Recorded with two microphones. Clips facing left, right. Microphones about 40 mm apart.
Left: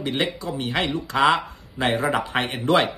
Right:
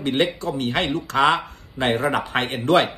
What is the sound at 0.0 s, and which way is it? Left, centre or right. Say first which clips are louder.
Speech: right 4 dB; right.